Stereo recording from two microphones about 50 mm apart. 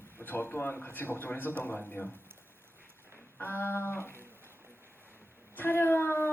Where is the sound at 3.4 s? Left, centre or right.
Left.